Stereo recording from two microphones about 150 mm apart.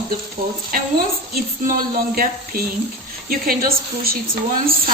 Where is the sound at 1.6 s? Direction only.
75° right (ahead or behind).